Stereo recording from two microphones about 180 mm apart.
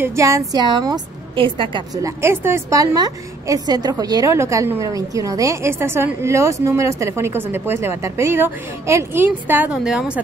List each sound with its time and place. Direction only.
0.0 s a woman's voice: 15° right (ahead or behind)
2.0 s a woman's voice: 15° right (ahead or behind)